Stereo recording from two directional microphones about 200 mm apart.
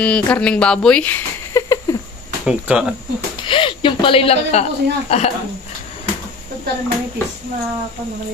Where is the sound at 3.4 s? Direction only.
25° left (ahead or behind).